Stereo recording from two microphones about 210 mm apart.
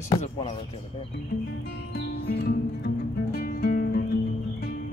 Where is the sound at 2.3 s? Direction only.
45° left (ahead or behind).